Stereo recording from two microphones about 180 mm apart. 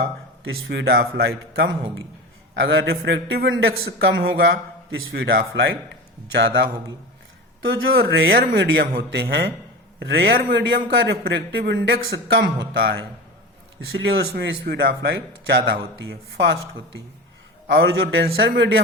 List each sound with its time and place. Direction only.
0.0 s a man's voice: 90° right; by 6.7 s 65° right (ahead or behind)
7.6 s speech: 90° right
8.1 s speech: 75° right (ahead or behind)
10.0 s a man's voice: 75° right (ahead or behind); by 10.8 s 90° right
10.8 s a man's voice: 65° right (ahead or behind)
14.0 s speech: 80° right; by 15.8 s 60° right (ahead or behind)
16.0 s a man's voice: 90° right
17.7 s a man's voice: 75° right (ahead or behind)